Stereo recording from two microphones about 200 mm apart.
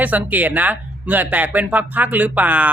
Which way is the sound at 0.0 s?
10° right (ahead or behind).